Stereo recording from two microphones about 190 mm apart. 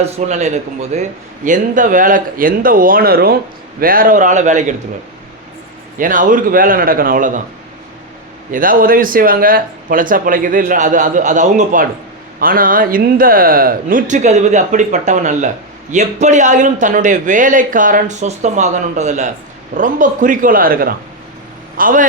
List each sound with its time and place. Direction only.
0.0 s a man's voice: 35° right (ahead or behind)
6.0 s a man's voice: 45° right (ahead or behind)
8.5 s a man's voice: 45° right (ahead or behind)